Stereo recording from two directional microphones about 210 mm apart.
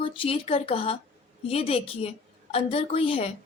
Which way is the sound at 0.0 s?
25° left (ahead or behind).